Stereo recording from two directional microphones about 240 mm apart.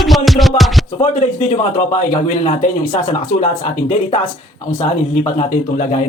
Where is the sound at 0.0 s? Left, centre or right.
Centre.